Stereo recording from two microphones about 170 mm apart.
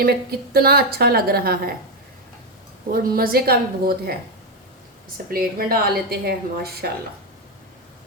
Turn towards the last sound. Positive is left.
turn(degrees=-65)  # may be behind; listen again after turning